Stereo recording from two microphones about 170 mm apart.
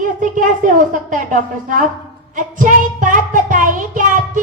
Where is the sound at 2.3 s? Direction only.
50° right (ahead or behind).